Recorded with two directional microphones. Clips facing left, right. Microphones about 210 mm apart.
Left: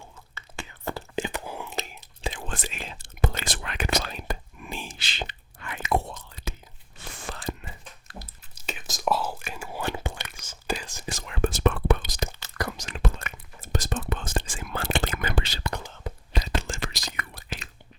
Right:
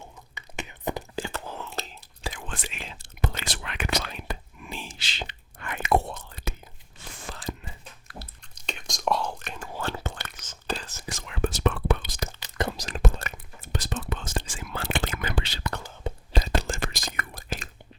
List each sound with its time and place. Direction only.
0.0 s whispering: 20° right (ahead or behind)
1.1 s whispering: 15° left (ahead or behind)
2.5 s whispering: 40° left (ahead or behind)
5.5 s whispering: 60° right (ahead or behind)
7.0 s a sound: 75° left (ahead or behind)
8.2 s whispering: 5° left (ahead or behind)
11.1 s whispering: 45° left (ahead or behind)
12.4 s whispering: 25° right (ahead or behind)
12.7 s whispering: 35° right (ahead or behind)
13.6 s whispering: 45° left (ahead or behind)
16.1 s whispering: 25° right (ahead or behind)
16.6 s whispering: 45° right (ahead or behind)